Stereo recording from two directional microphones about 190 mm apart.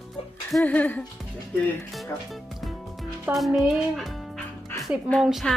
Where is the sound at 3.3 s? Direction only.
Centre (ahead or behind).